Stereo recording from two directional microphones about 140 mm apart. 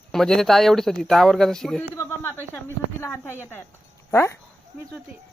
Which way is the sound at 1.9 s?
15° left (ahead or behind).